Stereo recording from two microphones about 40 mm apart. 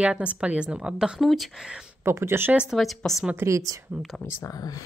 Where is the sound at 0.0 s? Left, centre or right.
Right.